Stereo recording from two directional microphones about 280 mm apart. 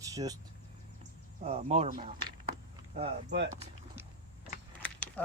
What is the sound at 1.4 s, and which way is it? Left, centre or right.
Speech, right.